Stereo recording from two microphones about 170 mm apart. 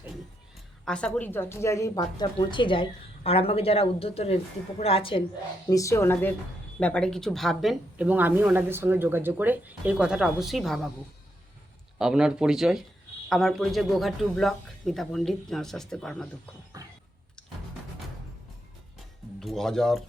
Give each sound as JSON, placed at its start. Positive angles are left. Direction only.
{"t": 0.9, "sound": "a woman's voice", "side_deg": 5}
{"t": 5.6, "sound": "a woman's voice", "side_deg": 20}
{"t": 11.9, "sound": "speech", "side_deg": -5}
{"t": 16.8, "sound": "a sound", "side_deg": -20}
{"t": 19.4, "sound": "speech", "side_deg": 0}